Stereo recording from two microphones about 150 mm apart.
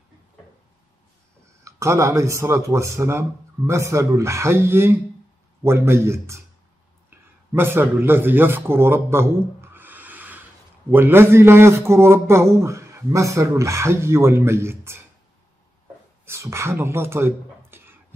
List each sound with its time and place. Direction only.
1.6 s a man's voice: 20° right (ahead or behind)
16.3 s speech: 20° right (ahead or behind)